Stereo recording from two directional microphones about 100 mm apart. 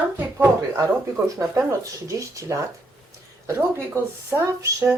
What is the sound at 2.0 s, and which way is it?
Speech, 30° right (ahead or behind).